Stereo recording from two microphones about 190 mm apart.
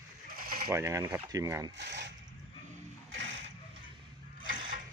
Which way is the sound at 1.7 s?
70° right (ahead or behind).